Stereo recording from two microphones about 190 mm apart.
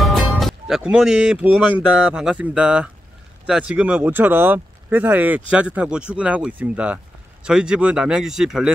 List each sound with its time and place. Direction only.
0.0 s speech: centre (ahead or behind)